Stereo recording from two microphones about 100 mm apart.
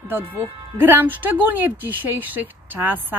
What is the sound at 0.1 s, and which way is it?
Speech, 20° right (ahead or behind).